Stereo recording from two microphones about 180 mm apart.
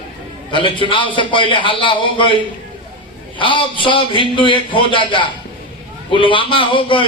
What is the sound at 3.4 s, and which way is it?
A man's voice, 30° left (ahead or behind).